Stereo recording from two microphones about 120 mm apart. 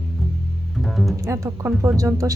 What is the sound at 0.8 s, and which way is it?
Music, centre (ahead or behind).